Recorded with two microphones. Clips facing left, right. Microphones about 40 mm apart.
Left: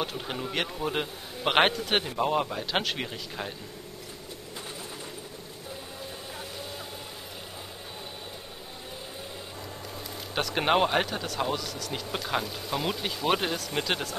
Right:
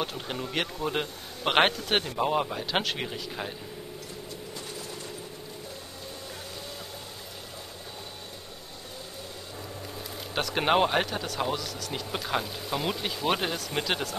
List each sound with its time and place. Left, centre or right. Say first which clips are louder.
0.0 s speech: even; centre
10.3 s speech: even; centre